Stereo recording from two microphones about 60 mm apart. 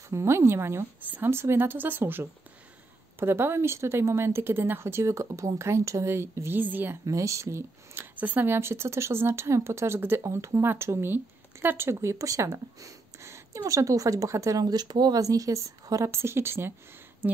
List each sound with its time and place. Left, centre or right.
0.1 s speech: right
6.6 s speech: right
7.1 s speech: right
8.2 s speech: right
8.5 s speech: right
9.9 s speech: right
10.2 s speech: right
10.6 s speech: right
16.1 s speech: right